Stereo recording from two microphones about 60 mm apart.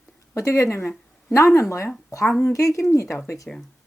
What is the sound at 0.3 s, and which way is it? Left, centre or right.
Speech, left.